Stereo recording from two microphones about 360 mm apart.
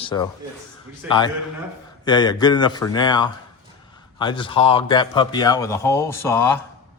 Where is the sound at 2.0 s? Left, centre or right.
Centre.